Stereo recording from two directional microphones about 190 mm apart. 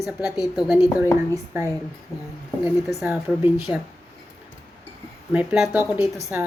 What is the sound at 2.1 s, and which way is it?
Speech, 15° left (ahead or behind).